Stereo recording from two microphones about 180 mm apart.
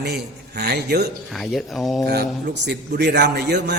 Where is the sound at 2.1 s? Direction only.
65° right (ahead or behind).